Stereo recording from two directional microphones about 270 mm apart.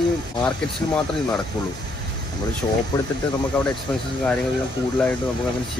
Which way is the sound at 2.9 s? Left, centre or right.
Centre.